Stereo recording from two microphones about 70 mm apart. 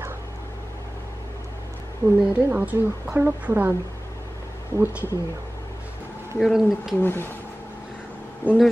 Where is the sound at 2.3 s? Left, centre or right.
Right.